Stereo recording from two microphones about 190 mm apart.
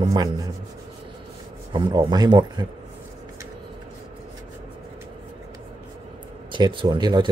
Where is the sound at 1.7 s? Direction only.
25° right (ahead or behind).